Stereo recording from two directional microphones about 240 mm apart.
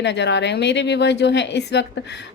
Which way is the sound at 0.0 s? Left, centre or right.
Left.